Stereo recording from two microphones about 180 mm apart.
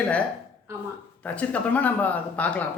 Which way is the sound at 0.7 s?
15° right (ahead or behind).